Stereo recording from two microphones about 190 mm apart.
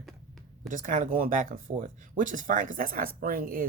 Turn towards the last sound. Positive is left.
turn(degrees=-50)  # may be behind; listen again after turning